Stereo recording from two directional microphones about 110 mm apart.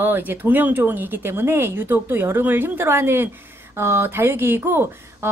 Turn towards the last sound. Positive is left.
turn(degrees=-25)  # may be behind; listen again after turning